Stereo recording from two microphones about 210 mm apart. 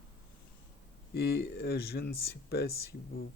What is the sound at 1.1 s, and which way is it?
Speech, 50° left (ahead or behind).